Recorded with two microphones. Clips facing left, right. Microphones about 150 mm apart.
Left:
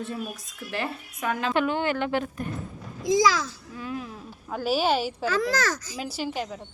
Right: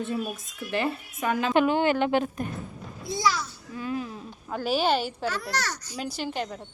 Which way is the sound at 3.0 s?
90° left.